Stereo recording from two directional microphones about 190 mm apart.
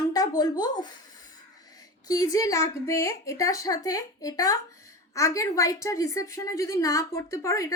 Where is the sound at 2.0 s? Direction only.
20° left (ahead or behind).